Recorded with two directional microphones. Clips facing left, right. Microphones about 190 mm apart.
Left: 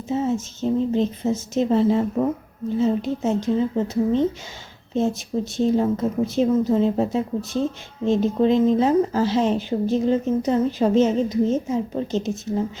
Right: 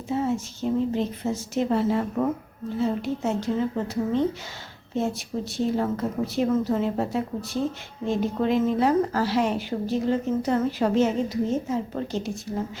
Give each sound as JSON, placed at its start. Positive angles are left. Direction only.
{"t": 0.1, "sound": "speech", "side_deg": 20}
{"t": 5.5, "sound": "speech", "side_deg": 20}